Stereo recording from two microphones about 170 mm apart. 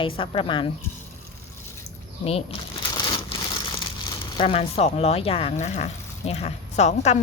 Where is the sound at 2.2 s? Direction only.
35° left (ahead or behind).